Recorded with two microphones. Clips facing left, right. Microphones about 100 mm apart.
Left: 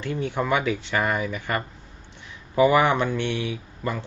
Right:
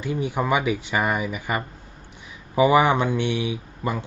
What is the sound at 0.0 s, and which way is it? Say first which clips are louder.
Speech: right 1 dB; 10° right (ahead or behind).